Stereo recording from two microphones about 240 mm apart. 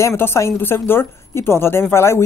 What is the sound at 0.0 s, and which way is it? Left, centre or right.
A woman's voice, centre.